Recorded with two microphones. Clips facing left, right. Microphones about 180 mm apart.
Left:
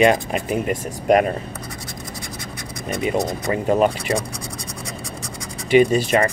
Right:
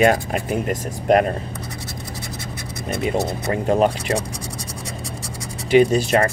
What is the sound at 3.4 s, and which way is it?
Speech, 5° left (ahead or behind).